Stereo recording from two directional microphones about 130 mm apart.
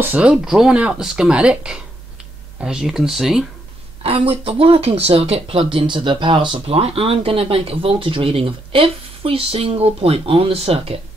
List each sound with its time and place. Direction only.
0.0 s speech: 10° right (ahead or behind)
4.0 s speech: 50° right (ahead or behind)